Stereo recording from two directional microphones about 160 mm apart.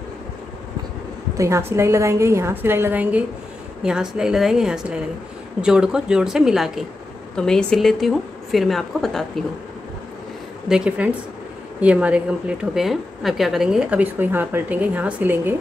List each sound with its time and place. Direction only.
1.3 s a woman's voice: 20° right (ahead or behind); by 9.4 s centre (ahead or behind)
10.7 s a woman's voice: 5° right (ahead or behind)